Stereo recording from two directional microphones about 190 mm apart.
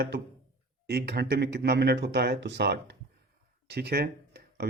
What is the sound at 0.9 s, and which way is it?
Speech, 60° right (ahead or behind).